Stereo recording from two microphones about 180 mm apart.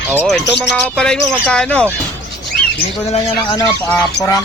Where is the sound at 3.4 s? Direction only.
25° left (ahead or behind).